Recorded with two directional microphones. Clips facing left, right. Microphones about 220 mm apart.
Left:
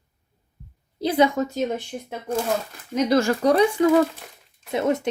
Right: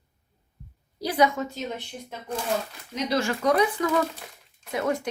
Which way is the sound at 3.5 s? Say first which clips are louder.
Left 6 dB; 25° left (ahead or behind).